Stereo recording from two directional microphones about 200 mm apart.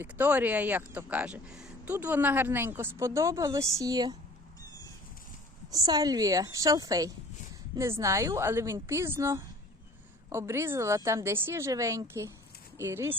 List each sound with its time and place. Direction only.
0.0 s speech: 10° right (ahead or behind)
5.7 s speech: 20° right (ahead or behind)